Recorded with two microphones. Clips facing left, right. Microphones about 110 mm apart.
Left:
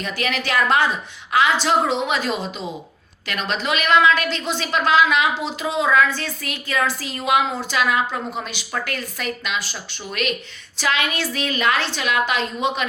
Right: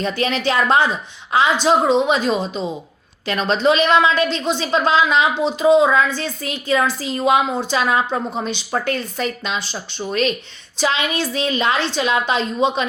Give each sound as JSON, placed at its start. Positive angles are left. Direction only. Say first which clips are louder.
{"t": 0.0, "sound": "a woman's voice", "louder": "right 5 dB", "side_deg": -30}